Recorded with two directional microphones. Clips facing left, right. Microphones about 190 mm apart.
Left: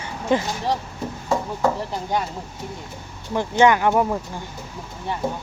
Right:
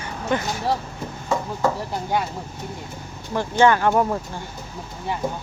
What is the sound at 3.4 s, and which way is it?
Speech, 20° left (ahead or behind).